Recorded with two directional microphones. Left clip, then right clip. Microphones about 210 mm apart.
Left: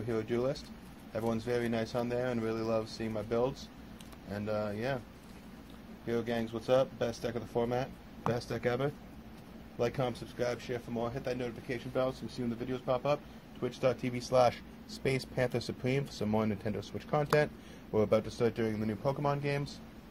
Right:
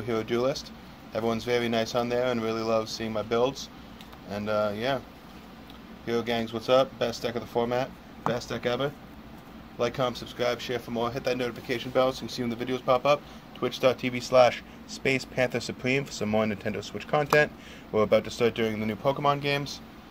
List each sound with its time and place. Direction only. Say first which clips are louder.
0.1 s speech: right 6 dB; 15° left (ahead or behind)
6.0 s speech: right 6 dB; 20° left (ahead or behind)